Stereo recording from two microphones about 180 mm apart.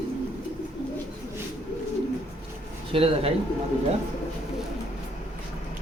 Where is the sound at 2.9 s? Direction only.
30° right (ahead or behind).